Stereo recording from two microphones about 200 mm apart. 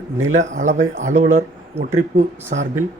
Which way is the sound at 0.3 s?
35° right (ahead or behind).